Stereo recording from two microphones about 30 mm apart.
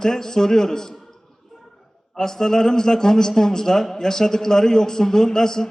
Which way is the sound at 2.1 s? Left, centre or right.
Centre.